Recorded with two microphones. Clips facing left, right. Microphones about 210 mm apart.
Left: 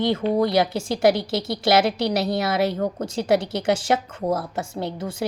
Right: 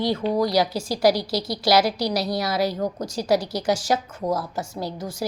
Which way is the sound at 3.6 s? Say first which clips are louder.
Left 1 dB; 55° left (ahead or behind).